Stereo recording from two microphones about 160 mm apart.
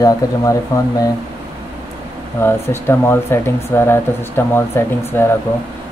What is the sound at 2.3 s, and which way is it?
Speech, 15° left (ahead or behind).